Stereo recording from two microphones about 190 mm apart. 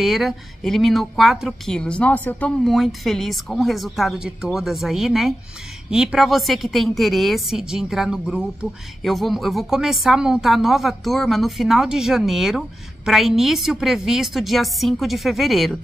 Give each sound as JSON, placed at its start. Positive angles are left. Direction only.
{"t": 0.0, "sound": "a woman's voice", "side_deg": 0}